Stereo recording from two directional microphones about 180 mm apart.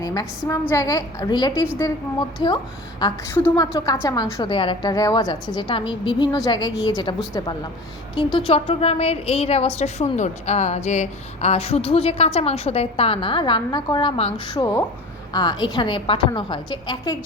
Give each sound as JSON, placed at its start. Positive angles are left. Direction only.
{"t": 0.0, "sound": "a woman's voice", "side_deg": 20}
{"t": 3.0, "sound": "a woman's voice", "side_deg": 15}